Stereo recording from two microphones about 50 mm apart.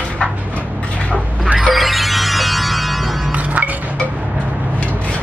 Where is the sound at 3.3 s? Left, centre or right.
Right.